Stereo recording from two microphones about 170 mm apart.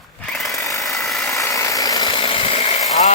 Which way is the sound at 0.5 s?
20° left (ahead or behind).